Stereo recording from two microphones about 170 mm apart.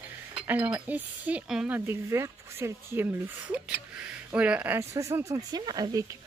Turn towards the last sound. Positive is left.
turn(degrees=-20)  # may be behind; listen again after turning